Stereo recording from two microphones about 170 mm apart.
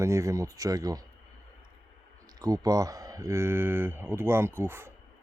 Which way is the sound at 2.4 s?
20° right (ahead or behind).